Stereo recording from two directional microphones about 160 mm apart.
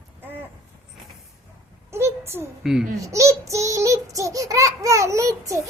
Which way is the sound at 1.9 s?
15° right (ahead or behind).